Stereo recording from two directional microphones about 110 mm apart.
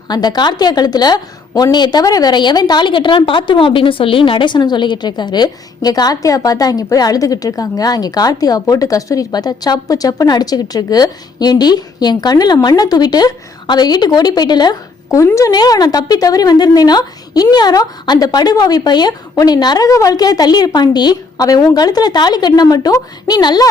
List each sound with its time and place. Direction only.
0.1 s a woman's voice: 40° left (ahead or behind)
15.2 s a woman's voice: 30° left (ahead or behind)